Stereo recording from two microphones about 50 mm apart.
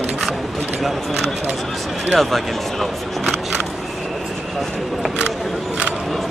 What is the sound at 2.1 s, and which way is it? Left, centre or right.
Speech, centre.